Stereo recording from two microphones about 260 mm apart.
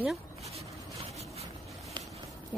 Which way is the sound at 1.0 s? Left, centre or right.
Right.